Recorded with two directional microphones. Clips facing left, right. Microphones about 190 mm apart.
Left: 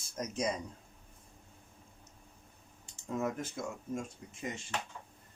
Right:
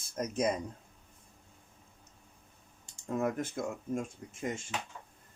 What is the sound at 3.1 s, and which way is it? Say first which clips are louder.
Speech: right 3 dB; 55° right (ahead or behind).